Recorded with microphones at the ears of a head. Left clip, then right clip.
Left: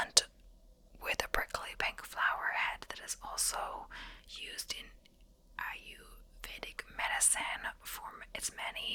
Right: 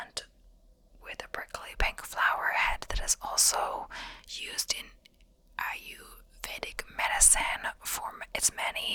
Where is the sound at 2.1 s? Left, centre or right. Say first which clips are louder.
Right 6 dB; right.